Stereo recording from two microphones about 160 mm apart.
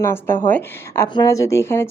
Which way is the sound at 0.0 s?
15° left (ahead or behind).